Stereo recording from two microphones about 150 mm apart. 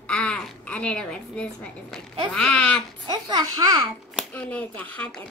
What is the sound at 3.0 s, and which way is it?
Speech, 30° right (ahead or behind).